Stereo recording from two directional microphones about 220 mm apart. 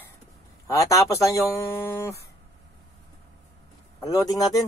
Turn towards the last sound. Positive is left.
turn(degrees=15)  # may be behind; listen again after turning